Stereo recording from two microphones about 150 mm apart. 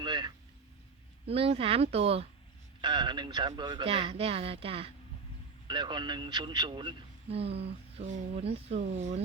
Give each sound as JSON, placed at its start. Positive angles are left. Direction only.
{"t": 0.0, "sound": "speech", "side_deg": -30}
{"t": 1.3, "sound": "speech", "side_deg": -40}
{"t": 2.8, "sound": "speech", "side_deg": -30}